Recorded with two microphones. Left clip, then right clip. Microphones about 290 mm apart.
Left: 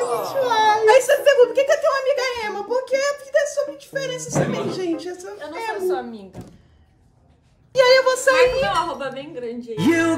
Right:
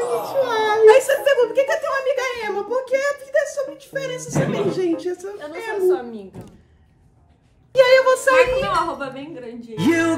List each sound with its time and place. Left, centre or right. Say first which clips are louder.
0.0 s a sound: right 1 dB; centre
5.4 s a woman's voice: left 1 dB; centre
5.9 s a woman's voice: right 8 dB; centre
7.7 s a sound: right 1 dB; centre
8.4 s a woman's voice: even; centre
9.8 s a woman's voice: even; centre